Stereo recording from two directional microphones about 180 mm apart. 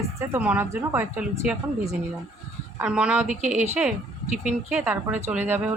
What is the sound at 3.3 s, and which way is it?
Speech, 40° right (ahead or behind).